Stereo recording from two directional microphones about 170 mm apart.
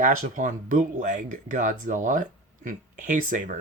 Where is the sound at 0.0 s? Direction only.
50° right (ahead or behind).